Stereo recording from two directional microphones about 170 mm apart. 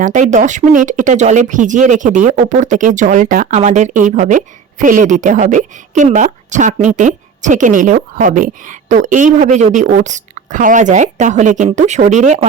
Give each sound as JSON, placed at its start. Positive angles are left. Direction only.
{"t": 0.0, "sound": "a woman's voice", "side_deg": -50}